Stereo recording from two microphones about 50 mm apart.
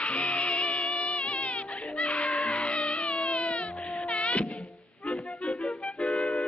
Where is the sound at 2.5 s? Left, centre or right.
Left.